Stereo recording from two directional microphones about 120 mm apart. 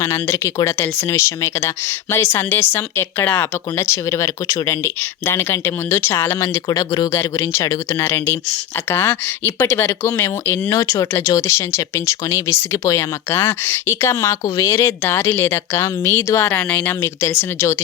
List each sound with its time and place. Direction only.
0.0 s speech: 20° left (ahead or behind)